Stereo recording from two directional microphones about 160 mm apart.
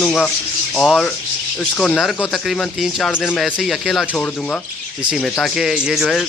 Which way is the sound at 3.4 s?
Centre (ahead or behind).